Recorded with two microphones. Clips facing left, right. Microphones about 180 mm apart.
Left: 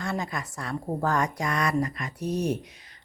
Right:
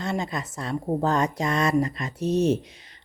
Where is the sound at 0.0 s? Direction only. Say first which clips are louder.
Right 3 dB; 20° right (ahead or behind).